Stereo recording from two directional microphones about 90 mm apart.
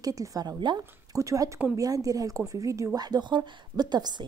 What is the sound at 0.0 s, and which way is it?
Speech, 40° right (ahead or behind).